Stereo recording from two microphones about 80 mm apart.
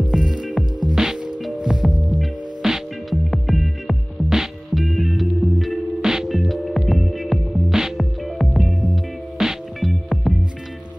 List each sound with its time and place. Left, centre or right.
0.1 s music: centre
1.9 s hum: right
2.1 s music: centre